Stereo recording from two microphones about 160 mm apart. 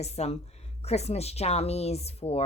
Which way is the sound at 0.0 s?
40° left (ahead or behind).